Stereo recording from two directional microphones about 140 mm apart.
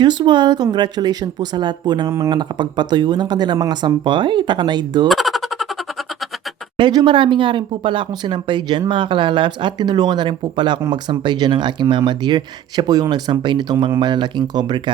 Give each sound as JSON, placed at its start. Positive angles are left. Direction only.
{"t": 0.0, "sound": "speech", "side_deg": -30}
{"t": 2.3, "sound": "speech", "side_deg": -35}
{"t": 5.0, "sound": "a sound", "side_deg": 0}
{"t": 6.7, "sound": "speech", "side_deg": -35}